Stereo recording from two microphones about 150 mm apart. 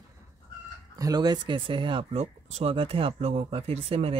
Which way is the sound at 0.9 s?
25° right (ahead or behind).